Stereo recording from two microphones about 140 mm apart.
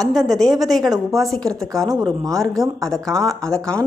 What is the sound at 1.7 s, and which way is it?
Speech, 25° right (ahead or behind).